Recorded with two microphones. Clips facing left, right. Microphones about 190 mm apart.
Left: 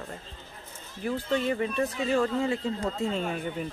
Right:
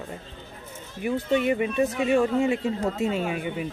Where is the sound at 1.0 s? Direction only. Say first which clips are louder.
Right 4 dB; 15° right (ahead or behind).